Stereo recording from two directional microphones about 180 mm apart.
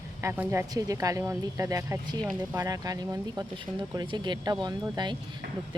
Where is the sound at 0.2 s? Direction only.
15° right (ahead or behind).